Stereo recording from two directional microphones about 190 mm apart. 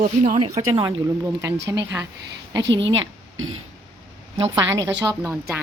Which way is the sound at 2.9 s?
90° right.